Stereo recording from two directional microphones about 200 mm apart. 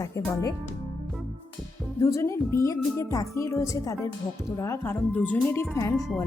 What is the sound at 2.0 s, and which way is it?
Speech, 15° left (ahead or behind).